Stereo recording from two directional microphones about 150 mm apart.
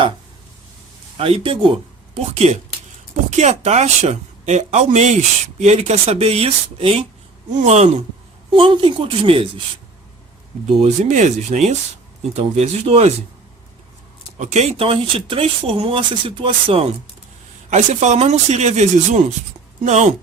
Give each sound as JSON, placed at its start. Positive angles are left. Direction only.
{"t": 1.1, "sound": "speech", "side_deg": -40}
{"t": 8.5, "sound": "speech", "side_deg": -35}
{"t": 10.8, "sound": "speech", "side_deg": -50}
{"t": 14.3, "sound": "speech", "side_deg": -50}
{"t": 17.7, "sound": "speech", "side_deg": -50}